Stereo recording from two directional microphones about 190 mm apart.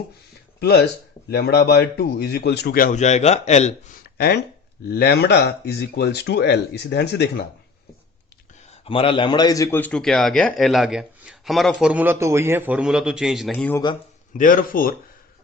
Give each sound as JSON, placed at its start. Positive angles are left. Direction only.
{"t": 0.6, "sound": "speech", "side_deg": 60}
{"t": 4.9, "sound": "speech", "side_deg": 60}
{"t": 8.7, "sound": "a man's voice", "side_deg": 30}
{"t": 14.3, "sound": "speech", "side_deg": 45}